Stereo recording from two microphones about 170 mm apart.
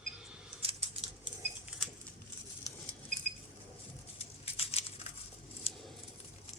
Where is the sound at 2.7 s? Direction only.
20° left (ahead or behind).